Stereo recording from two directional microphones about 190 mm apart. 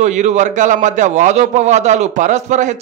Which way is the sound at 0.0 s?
40° right (ahead or behind).